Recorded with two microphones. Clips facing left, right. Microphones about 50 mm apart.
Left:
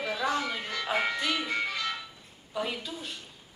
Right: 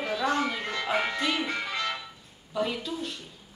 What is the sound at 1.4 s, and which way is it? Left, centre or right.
Music, right.